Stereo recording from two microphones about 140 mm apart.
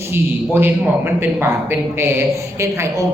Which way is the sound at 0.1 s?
15° right (ahead or behind).